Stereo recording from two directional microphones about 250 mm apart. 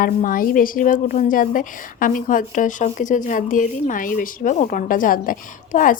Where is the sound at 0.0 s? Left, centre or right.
Left.